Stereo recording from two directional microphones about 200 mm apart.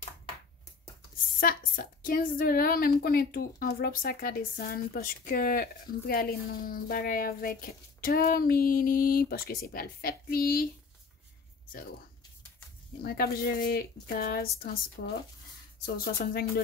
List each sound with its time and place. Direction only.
1.4 s a woman's voice: 45° left (ahead or behind)
13.0 s a woman's voice: 50° left (ahead or behind)